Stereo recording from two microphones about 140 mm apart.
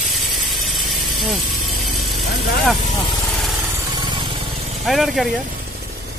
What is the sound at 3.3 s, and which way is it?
Vehicle, centre (ahead or behind).